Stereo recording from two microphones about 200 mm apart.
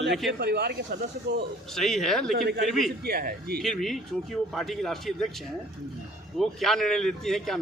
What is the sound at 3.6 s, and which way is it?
A man's voice, centre (ahead or behind).